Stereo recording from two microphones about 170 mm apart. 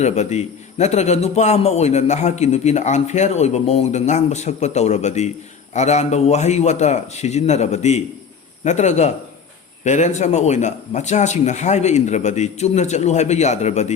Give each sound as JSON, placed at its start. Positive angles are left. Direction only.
{"t": 0.0, "sound": "a man's voice", "side_deg": 40}